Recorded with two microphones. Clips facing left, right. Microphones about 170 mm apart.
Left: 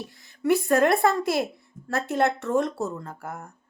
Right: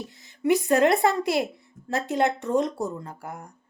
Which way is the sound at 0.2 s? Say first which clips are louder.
Even; 20° right (ahead or behind).